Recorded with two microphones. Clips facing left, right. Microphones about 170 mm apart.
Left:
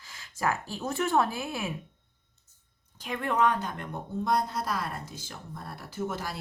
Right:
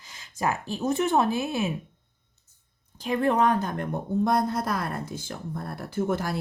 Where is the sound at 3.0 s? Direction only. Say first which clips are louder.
Right 4 dB; 35° right (ahead or behind).